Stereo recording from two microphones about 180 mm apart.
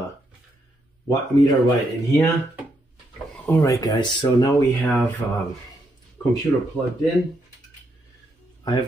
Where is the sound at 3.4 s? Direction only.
15° left (ahead or behind).